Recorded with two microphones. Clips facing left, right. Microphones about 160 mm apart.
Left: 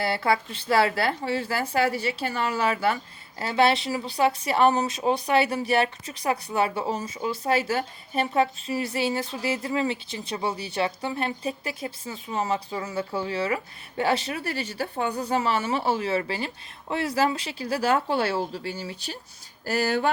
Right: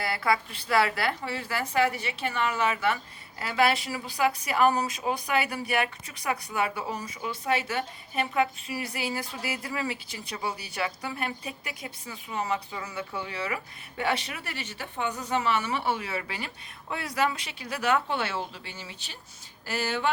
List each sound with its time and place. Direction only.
0.0 s a woman's voice: 30° left (ahead or behind)